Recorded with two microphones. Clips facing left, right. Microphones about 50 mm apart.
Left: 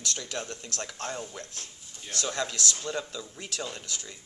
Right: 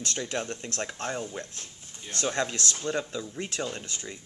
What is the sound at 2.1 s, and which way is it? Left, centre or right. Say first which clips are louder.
Speech: right 3 dB; right.